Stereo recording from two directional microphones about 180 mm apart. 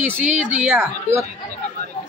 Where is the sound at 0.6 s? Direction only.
10° right (ahead or behind).